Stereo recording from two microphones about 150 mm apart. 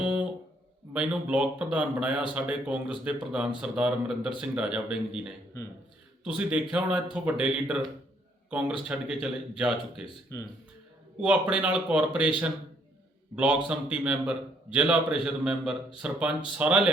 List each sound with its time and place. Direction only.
0.9 s a man's voice: 5° right (ahead or behind)
10.3 s speech: 20° left (ahead or behind)
11.2 s a man's voice: 5° right (ahead or behind)
13.3 s a man's voice: 10° right (ahead or behind)